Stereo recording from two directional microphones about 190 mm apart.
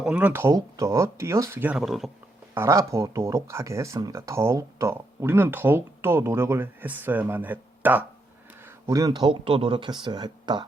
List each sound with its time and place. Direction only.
0.0 s speech: 5° right (ahead or behind)
2.6 s speech: 15° right (ahead or behind)